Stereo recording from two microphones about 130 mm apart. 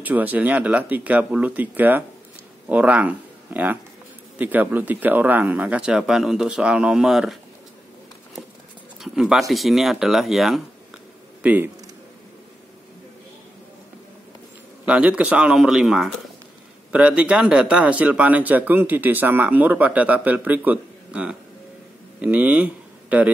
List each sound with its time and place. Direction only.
0.0 s speech: 15° right (ahead or behind)
9.0 s speech: 5° right (ahead or behind)
11.4 s speech: 10° right (ahead or behind)
14.9 s speech: 10° right (ahead or behind)